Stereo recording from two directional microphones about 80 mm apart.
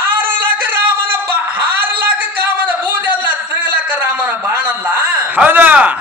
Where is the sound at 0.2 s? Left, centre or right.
Right.